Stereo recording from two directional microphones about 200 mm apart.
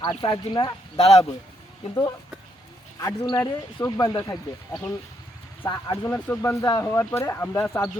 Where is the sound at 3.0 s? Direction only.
15° left (ahead or behind).